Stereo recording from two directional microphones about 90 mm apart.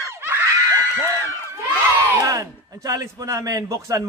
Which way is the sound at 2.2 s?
40° right (ahead or behind).